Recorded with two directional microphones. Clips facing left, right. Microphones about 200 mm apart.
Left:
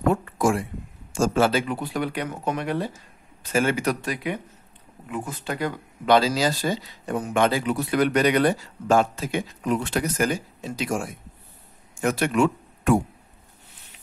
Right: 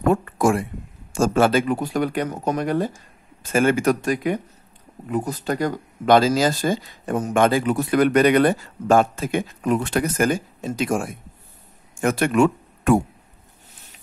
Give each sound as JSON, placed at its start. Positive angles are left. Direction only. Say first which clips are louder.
{"t": 0.1, "sound": "speech", "louder": "right 3 dB", "side_deg": -55}